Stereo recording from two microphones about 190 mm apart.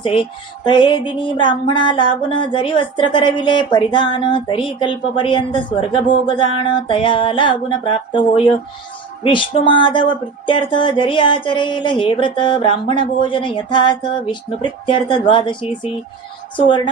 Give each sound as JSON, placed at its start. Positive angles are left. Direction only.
{"t": 0.0, "sound": "music", "side_deg": 25}
{"t": 9.2, "sound": "music", "side_deg": 25}